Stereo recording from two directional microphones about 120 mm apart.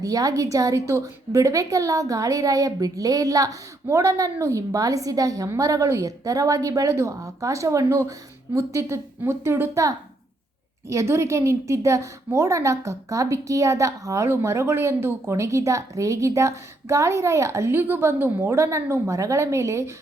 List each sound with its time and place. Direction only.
0.0 s a woman's voice: 30° right (ahead or behind)